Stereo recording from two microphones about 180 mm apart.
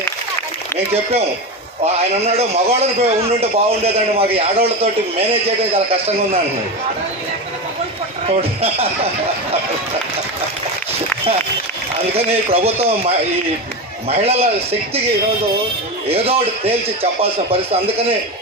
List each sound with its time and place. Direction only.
1.8 s a man's voice: 35° right (ahead or behind)
8.3 s a man's voice: 35° right (ahead or behind)
12.1 s a man's voice: 35° right (ahead or behind)
16.0 s a man's voice: 35° right (ahead or behind)